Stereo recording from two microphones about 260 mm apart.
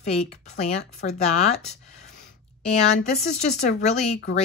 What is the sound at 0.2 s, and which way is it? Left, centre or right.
Speech, left.